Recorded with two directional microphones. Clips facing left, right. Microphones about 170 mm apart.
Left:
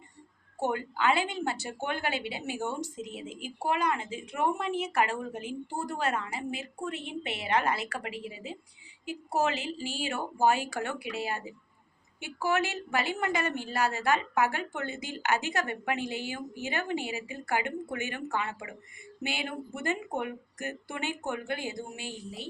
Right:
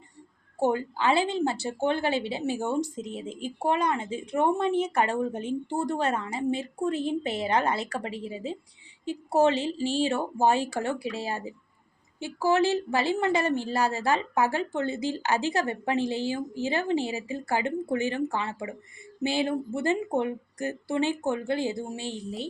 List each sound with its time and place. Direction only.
0.6 s a woman's voice: 35° right (ahead or behind)